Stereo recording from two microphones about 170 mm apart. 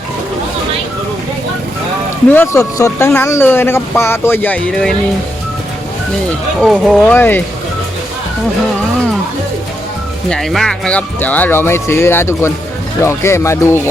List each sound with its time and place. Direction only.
2.3 s speech: 15° left (ahead or behind)
6.6 s speech: centre (ahead or behind)
10.2 s speech: 5° left (ahead or behind)